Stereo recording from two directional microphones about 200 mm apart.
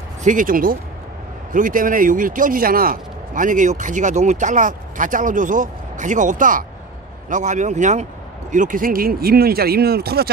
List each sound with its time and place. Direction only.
0.2 s speech: 40° right (ahead or behind)